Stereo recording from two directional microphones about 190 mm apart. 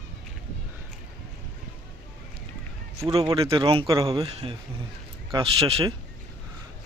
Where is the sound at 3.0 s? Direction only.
25° right (ahead or behind).